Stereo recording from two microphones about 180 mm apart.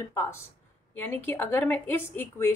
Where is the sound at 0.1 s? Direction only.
15° left (ahead or behind).